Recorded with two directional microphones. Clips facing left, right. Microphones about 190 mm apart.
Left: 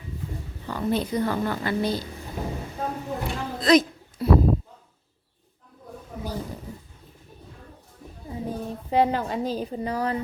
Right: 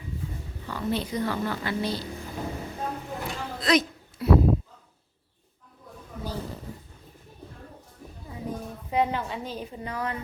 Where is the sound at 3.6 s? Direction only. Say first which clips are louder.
Left 5 dB; 35° left (ahead or behind).